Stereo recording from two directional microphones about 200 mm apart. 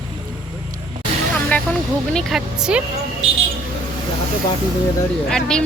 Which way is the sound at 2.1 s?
5° right (ahead or behind).